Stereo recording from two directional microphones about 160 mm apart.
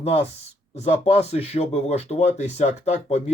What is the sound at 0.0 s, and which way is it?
Speech, 40° left (ahead or behind).